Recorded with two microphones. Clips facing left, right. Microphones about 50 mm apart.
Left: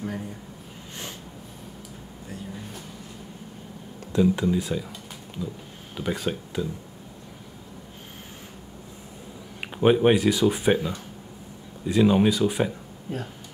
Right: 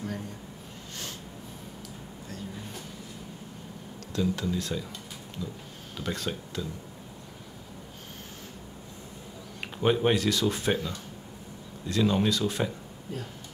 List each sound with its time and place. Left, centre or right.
4.1 s speech: left
5.9 s speech: centre
9.6 s speech: centre
13.1 s speech: left